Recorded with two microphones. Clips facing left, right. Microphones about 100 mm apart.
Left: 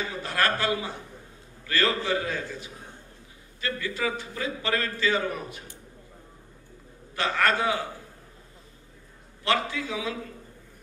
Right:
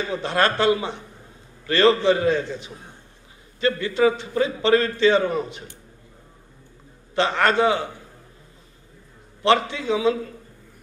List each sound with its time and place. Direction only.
0.1 s a man's voice: 25° right (ahead or behind)
7.2 s a man's voice: 25° right (ahead or behind)
9.4 s a man's voice: 25° right (ahead or behind)